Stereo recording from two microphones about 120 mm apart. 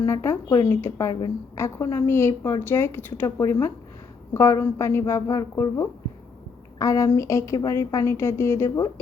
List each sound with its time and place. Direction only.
0.0 s a woman's voice: 25° left (ahead or behind)